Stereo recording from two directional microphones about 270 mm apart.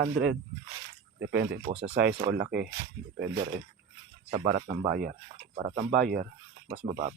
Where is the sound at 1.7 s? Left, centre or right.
Right.